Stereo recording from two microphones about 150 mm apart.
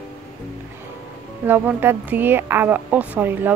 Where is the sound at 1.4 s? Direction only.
15° right (ahead or behind).